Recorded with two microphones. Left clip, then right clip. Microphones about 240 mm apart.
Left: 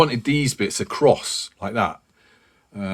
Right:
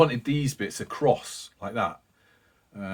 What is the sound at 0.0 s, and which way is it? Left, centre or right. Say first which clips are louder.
Speech: left 4 dB; left.